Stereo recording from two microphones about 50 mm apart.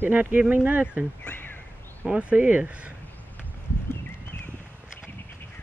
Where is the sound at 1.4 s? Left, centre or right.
Left.